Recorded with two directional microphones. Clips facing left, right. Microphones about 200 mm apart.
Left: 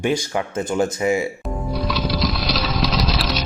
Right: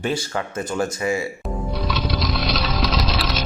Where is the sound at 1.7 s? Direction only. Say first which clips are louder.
Left 3 dB; centre (ahead or behind).